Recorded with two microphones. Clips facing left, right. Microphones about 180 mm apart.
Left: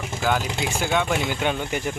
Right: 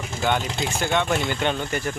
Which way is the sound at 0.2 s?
Centre (ahead or behind).